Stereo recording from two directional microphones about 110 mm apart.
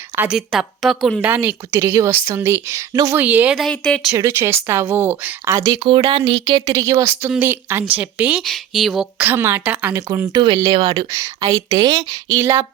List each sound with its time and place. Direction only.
0.3 s a woman's voice: centre (ahead or behind)
1.2 s a woman's voice: 15° right (ahead or behind)
3.2 s a woman's voice: 15° right (ahead or behind)
3.5 s a woman's voice: 5° left (ahead or behind)
4.1 s a woman's voice: 25° right (ahead or behind)
5.5 s a woman's voice: 30° right (ahead or behind)
5.8 s speech: 50° right (ahead or behind)
6.7 s a woman's voice: 30° right (ahead or behind); by 8.4 s 10° right (ahead or behind)
8.4 s a woman's voice: centre (ahead or behind)
9.1 s a woman's voice: 15° right (ahead or behind)
10.3 s speech: 50° right (ahead or behind)
11.1 s speech: 30° right (ahead or behind)
12.4 s a woman's voice: 25° right (ahead or behind)